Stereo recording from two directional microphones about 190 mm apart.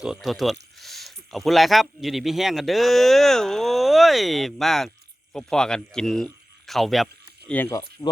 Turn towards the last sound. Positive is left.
turn(degrees=10)  # may be behind; listen again after turning